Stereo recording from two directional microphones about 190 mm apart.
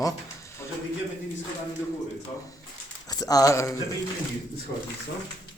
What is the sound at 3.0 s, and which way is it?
Speech, 20° left (ahead or behind).